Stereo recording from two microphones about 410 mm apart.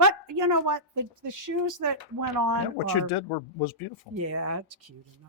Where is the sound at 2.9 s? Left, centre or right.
Left.